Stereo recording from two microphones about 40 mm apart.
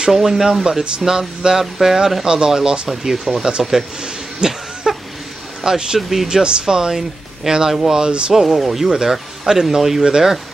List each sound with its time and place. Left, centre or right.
0.1 s speech: centre
2.2 s speech: centre
2.9 s speech: centre
4.0 s insect: centre
5.6 s speech: centre
6.2 s speech: centre